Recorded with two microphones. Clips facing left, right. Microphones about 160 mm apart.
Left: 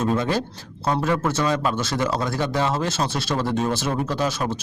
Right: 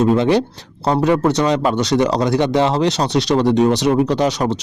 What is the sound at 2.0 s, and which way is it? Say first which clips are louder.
Speech: right 9 dB; 20° right (ahead or behind).